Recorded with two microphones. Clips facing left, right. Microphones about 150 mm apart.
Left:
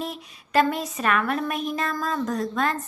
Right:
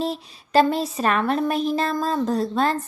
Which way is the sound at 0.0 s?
30° right (ahead or behind).